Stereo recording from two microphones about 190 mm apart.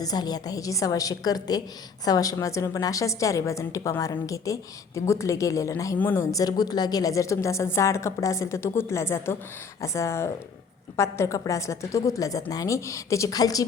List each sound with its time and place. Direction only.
0.0 s a woman's voice: 20° left (ahead or behind)